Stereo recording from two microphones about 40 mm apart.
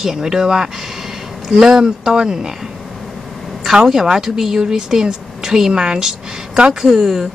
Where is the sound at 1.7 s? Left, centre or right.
Centre.